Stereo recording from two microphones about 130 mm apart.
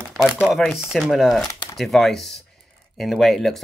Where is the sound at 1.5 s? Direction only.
25° left (ahead or behind).